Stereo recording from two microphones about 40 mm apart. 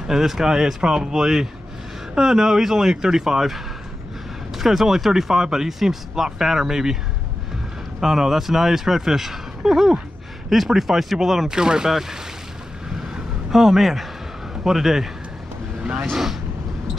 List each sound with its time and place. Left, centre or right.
0.0 s speech: centre
8.0 s speech: centre
11.4 s speech: centre
13.5 s speech: centre